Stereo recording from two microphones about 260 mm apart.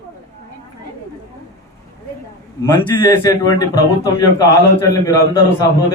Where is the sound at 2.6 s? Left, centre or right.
Centre.